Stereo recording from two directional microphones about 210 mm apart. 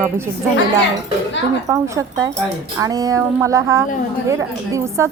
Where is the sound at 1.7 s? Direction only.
15° right (ahead or behind).